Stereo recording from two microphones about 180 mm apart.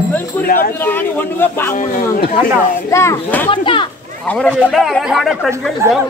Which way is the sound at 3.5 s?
25° left (ahead or behind).